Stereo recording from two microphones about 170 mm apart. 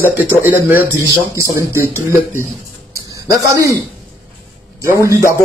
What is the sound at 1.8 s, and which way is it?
Speech, 15° left (ahead or behind).